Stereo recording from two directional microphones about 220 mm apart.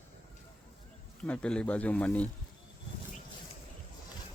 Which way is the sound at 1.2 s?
5° left (ahead or behind).